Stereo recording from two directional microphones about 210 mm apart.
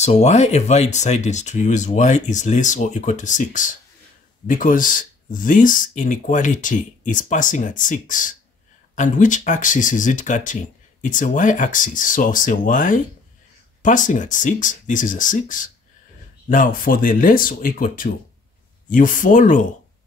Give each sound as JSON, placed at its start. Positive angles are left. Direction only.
{"t": 0.0, "sound": "speech", "side_deg": 30}